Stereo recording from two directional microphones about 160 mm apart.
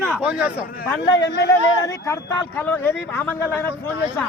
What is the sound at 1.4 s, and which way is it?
Speech, 20° left (ahead or behind).